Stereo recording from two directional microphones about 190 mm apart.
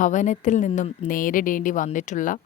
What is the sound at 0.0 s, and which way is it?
Speech, 40° left (ahead or behind).